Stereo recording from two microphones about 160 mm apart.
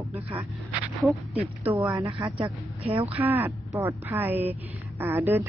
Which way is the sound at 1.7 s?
20° right (ahead or behind).